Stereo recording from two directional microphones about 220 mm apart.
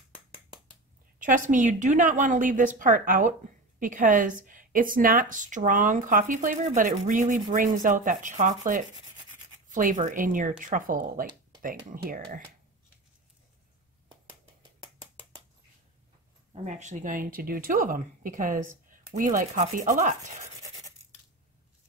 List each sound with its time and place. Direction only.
1.2 s speech: 35° right (ahead or behind)
16.6 s speech: 30° right (ahead or behind)